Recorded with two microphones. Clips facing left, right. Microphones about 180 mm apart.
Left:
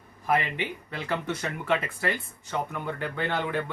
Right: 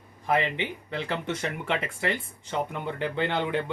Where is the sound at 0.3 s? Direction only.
20° right (ahead or behind).